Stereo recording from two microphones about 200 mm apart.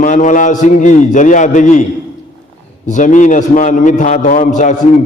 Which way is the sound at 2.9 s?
40° left (ahead or behind).